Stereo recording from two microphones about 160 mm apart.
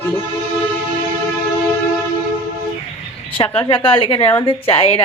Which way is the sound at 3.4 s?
30° left (ahead or behind).